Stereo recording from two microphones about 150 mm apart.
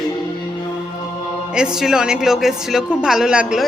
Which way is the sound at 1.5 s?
5° right (ahead or behind).